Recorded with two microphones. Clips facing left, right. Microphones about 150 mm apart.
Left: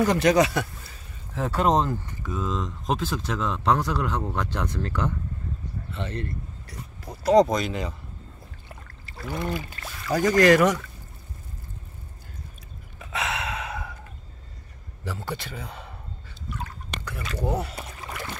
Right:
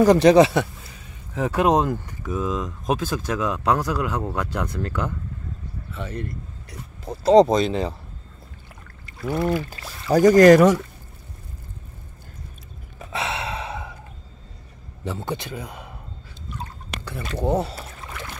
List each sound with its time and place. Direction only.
0.0 s speech: 35° right (ahead or behind)
1.3 s speech: 15° right (ahead or behind)
7.1 s speech: 25° right (ahead or behind)
10.1 s speech: 40° right (ahead or behind)
13.0 s sigh: 30° right (ahead or behind)
15.0 s speech: 20° right (ahead or behind)
17.3 s speech: 25° right (ahead or behind)
17.7 s rowboat: 10° left (ahead or behind)